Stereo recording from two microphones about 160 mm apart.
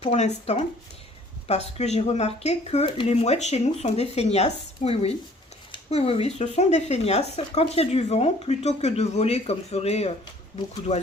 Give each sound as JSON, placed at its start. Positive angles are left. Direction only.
{"t": 0.0, "sound": "speech", "side_deg": 45}